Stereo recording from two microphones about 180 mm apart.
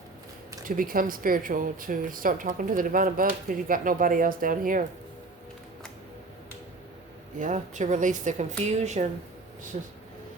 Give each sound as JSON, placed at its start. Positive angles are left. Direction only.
{"t": 0.8, "sound": "a woman's voice", "side_deg": -50}
{"t": 7.3, "sound": "a woman's voice", "side_deg": -45}